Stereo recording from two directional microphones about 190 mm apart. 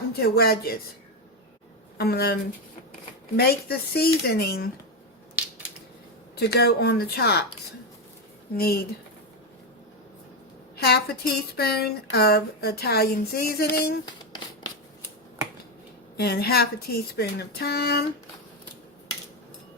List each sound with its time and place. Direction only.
0.2 s speech: 55° left (ahead or behind)
2.0 s speech: 55° left (ahead or behind)
6.3 s speech: 60° left (ahead or behind)
8.5 s speech: 55° left (ahead or behind)
10.8 s speech: 55° left (ahead or behind)
14.0 s a sound: 25° left (ahead or behind)
16.1 s speech: 55° left (ahead or behind)